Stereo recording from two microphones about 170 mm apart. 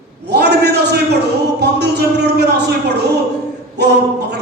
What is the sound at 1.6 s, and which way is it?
Speech, 75° right (ahead or behind).